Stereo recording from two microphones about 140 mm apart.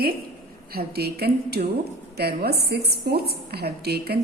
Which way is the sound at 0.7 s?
90° right.